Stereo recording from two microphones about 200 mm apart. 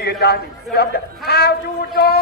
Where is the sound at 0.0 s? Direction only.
55° left (ahead or behind).